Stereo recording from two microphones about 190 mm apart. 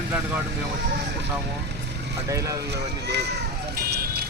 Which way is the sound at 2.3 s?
15° right (ahead or behind).